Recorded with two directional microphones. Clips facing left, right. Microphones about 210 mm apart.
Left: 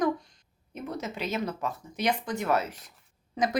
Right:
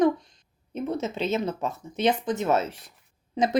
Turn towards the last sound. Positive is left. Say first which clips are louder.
# right 3 dB
turn(degrees=-20)  # may be behind; listen again after turning